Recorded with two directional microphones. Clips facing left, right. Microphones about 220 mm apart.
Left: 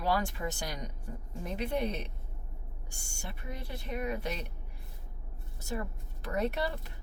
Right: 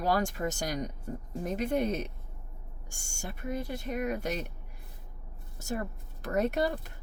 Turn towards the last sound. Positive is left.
turn(degrees=-45)  # may be behind; listen again after turning